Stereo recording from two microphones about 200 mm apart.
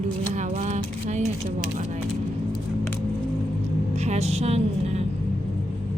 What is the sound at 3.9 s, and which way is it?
Speech, 35° right (ahead or behind).